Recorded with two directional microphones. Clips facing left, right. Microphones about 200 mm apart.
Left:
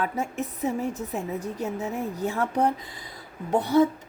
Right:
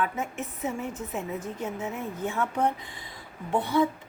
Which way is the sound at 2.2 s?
35° left (ahead or behind).